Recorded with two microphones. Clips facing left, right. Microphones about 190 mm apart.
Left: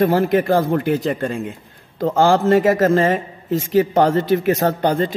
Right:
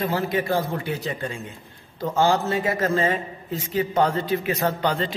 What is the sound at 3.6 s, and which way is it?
Speech, 90° left.